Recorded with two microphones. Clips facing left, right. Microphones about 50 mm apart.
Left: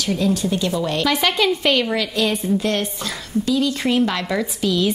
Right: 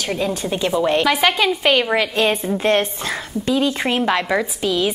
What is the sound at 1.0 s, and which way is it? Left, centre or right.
Speech, centre.